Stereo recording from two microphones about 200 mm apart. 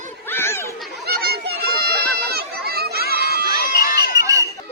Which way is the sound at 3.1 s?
50° right (ahead or behind).